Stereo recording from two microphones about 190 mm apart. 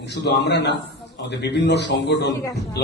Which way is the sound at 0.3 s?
65° left (ahead or behind).